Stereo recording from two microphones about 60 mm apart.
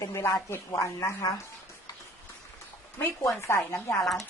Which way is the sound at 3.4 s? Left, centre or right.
Left.